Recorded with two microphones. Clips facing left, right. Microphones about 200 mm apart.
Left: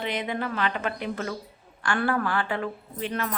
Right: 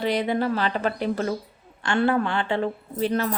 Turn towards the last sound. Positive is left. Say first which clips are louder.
# right 6 dB
turn(degrees=-35)  # may be behind; listen again after turning